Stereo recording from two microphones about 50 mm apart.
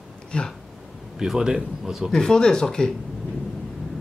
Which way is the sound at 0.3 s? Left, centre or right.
Centre.